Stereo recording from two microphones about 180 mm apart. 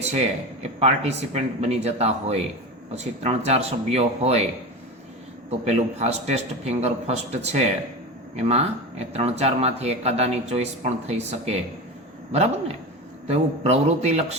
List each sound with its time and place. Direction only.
0.0 s speech: 35° right (ahead or behind)
5.5 s speech: 35° right (ahead or behind)